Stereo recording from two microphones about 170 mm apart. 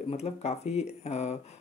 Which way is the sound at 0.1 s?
40° left (ahead or behind).